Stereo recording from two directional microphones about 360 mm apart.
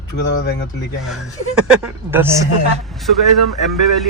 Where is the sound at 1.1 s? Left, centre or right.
Centre.